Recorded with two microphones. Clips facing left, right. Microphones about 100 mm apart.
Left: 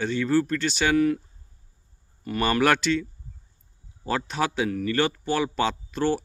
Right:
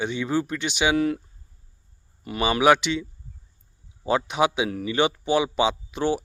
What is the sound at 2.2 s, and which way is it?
Speech, 15° right (ahead or behind).